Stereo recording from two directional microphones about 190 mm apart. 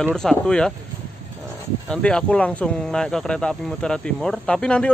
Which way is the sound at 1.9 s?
5° left (ahead or behind).